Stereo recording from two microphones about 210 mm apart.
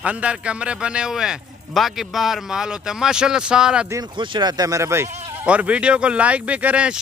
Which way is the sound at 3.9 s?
20° right (ahead or behind).